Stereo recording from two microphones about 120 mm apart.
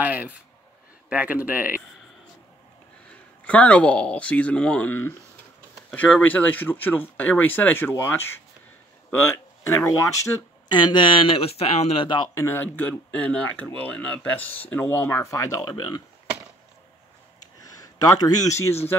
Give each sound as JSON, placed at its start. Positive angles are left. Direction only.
{"t": 0.0, "sound": "a sound", "side_deg": -15}
{"t": 1.0, "sound": "speech", "side_deg": -10}
{"t": 3.1, "sound": "speech", "side_deg": 10}
{"t": 10.8, "sound": "speech", "side_deg": 40}
{"t": 12.4, "sound": "speech", "side_deg": 20}
{"t": 17.4, "sound": "a sound", "side_deg": 30}